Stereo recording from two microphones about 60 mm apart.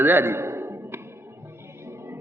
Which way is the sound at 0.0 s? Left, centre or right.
Right.